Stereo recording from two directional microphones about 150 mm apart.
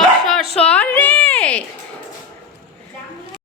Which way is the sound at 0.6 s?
10° left (ahead or behind).